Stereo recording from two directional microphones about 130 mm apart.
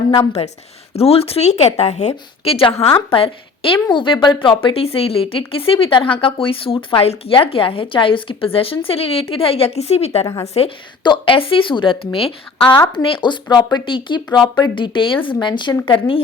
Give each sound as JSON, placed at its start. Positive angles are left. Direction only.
{"t": 0.4, "sound": "a woman's voice", "side_deg": 50}
{"t": 11.0, "sound": "a woman's voice", "side_deg": 40}